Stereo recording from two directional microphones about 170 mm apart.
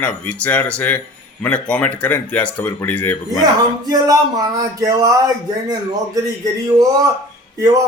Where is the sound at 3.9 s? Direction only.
20° right (ahead or behind).